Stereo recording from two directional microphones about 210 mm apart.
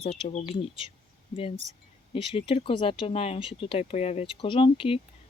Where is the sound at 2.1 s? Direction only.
25° left (ahead or behind).